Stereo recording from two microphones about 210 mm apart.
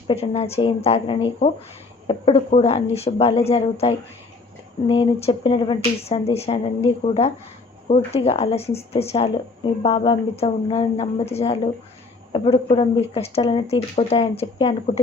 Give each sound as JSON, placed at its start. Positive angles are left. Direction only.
{"t": 0.1, "sound": "speech", "side_deg": 30}
{"t": 12.7, "sound": "speech", "side_deg": 30}